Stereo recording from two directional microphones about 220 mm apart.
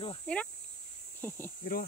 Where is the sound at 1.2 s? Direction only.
10° left (ahead or behind).